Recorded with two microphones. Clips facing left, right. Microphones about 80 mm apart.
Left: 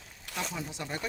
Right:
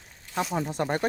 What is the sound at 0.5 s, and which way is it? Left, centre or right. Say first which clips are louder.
Speech: right 10 dB; right.